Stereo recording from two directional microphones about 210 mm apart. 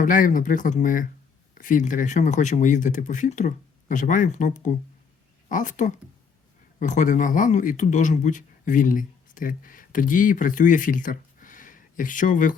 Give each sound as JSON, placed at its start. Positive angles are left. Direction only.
{"t": 0.0, "sound": "speech", "side_deg": 40}